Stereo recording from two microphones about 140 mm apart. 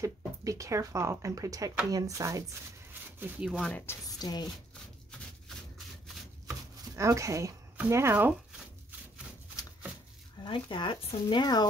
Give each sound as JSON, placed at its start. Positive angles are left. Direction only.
{"t": 0.0, "sound": "speech", "side_deg": -25}
{"t": 2.9, "sound": "a sound", "side_deg": -15}
{"t": 3.4, "sound": "speech", "side_deg": 5}
{"t": 4.2, "sound": "speech", "side_deg": 30}
{"t": 7.0, "sound": "speech", "side_deg": -20}
{"t": 10.4, "sound": "speech", "side_deg": 35}